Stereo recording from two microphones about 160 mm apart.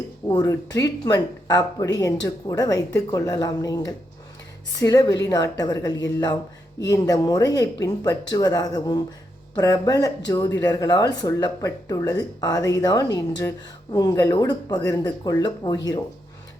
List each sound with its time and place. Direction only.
0.3 s a woman's voice: 25° left (ahead or behind)